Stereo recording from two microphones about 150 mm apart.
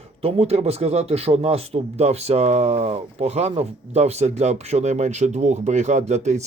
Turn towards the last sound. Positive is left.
turn(degrees=-50)  # may be behind; listen again after turning